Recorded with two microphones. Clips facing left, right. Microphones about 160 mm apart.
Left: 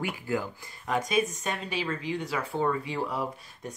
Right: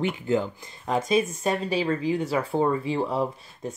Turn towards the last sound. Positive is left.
turn(degrees=-25)  # may be behind; listen again after turning